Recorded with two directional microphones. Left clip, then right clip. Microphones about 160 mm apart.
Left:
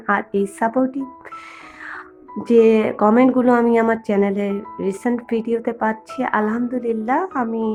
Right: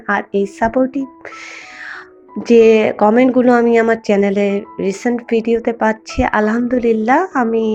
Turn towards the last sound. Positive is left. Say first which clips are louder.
# right 7 dB
turn(degrees=-20)  # may be behind; listen again after turning